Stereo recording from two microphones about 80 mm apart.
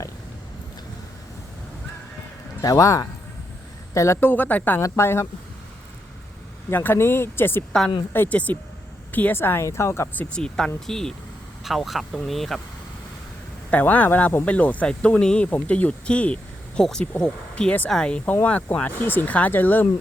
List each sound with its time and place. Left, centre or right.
2.6 s speech: left
4.2 s speech: left
4.8 s speech: left
6.7 s speech: left
7.7 s speech: centre
8.1 s speech: left
10.2 s speech: centre
13.7 s speech: centre